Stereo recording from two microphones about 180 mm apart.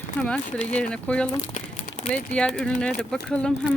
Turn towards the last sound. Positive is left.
turn(degrees=5)  # may be behind; listen again after turning